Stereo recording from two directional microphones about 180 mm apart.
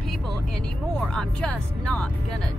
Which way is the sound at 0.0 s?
Centre (ahead or behind).